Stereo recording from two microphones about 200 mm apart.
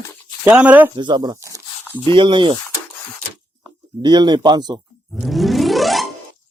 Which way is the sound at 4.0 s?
20° right (ahead or behind).